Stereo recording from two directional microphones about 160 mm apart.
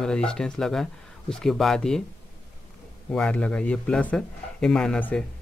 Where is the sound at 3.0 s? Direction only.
5° left (ahead or behind).